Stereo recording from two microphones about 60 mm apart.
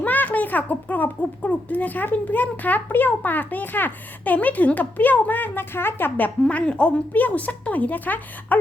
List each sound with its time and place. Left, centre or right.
0.0 s a child's voice: left
6.4 s a child's voice: centre